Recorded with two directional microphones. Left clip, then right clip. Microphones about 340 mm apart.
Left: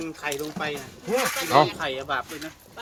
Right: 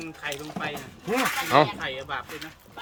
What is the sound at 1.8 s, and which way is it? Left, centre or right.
Speech, centre.